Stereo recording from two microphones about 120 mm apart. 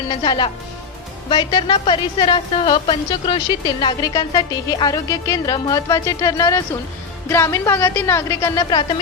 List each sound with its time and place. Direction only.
0.1 s a woman's voice: 40° left (ahead or behind)